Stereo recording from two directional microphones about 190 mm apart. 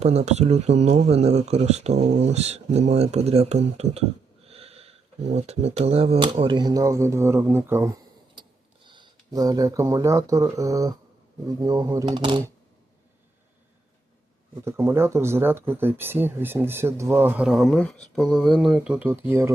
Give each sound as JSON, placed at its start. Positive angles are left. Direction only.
{"t": 0.0, "sound": "speech", "side_deg": -35}
{"t": 4.4, "sound": "a sound", "side_deg": -30}
{"t": 5.3, "sound": "speech", "side_deg": -35}
{"t": 8.4, "sound": "speech", "side_deg": -25}
{"t": 14.5, "sound": "speech", "side_deg": -15}